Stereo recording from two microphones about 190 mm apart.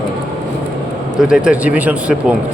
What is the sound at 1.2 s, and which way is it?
Speech, 5° right (ahead or behind).